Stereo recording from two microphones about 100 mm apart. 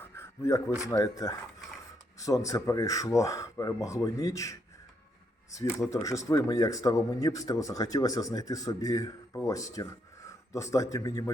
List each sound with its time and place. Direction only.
0.0 s a sound: 30° left (ahead or behind)
0.8 s speech: 30° left (ahead or behind)
5.9 s speech: 35° left (ahead or behind)